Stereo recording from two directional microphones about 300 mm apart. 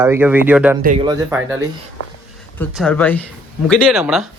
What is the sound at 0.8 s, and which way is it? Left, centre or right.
Speech, right.